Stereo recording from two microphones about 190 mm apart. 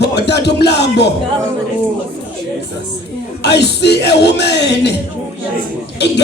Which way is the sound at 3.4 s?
60° left (ahead or behind).